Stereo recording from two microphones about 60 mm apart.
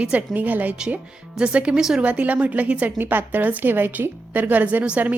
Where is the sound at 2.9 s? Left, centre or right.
Right.